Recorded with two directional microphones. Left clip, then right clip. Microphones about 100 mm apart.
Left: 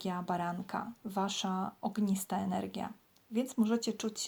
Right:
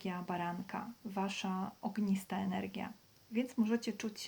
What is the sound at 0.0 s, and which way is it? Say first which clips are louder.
Speech: left 4 dB; 45° left (ahead or behind).